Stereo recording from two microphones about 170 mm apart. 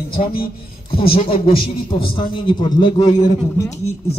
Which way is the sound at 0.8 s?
30° left (ahead or behind).